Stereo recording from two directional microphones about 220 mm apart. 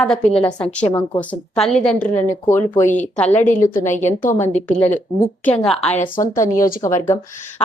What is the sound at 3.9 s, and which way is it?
A woman's voice, 10° left (ahead or behind).